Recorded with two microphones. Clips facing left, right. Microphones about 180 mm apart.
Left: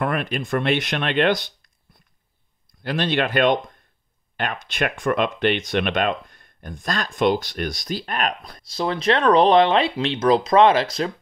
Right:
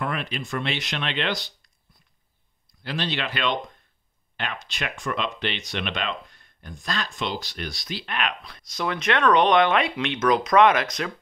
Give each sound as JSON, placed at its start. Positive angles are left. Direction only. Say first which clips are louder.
{"t": 0.0, "sound": "speech", "louder": "left 5 dB", "side_deg": 50}
{"t": 2.8, "sound": "speech", "louder": "left 7 dB", "side_deg": 50}
{"t": 8.6, "sound": "speech", "louder": "left 5 dB", "side_deg": 30}